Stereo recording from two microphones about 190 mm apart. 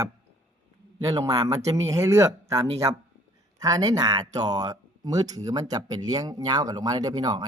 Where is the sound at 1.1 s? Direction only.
20° right (ahead or behind).